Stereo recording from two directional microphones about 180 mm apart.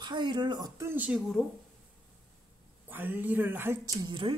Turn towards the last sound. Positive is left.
turn(degrees=-25)  # may be behind; listen again after turning